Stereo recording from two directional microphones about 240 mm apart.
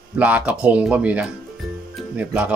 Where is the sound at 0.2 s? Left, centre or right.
Centre.